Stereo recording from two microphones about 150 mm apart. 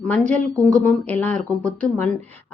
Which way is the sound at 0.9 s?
10° left (ahead or behind).